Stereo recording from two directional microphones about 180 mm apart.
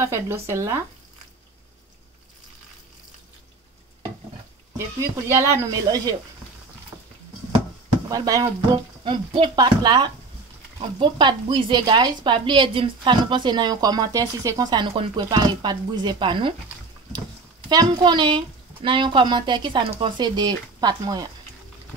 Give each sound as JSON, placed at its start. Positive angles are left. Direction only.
{"t": 0.0, "sound": "speech", "side_deg": -15}
{"t": 4.7, "sound": "speech", "side_deg": -15}
{"t": 8.1, "sound": "a woman's voice", "side_deg": -20}
{"t": 17.6, "sound": "a woman's voice", "side_deg": -25}